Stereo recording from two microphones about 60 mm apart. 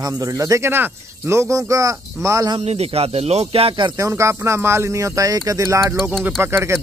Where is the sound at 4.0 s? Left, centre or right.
Right.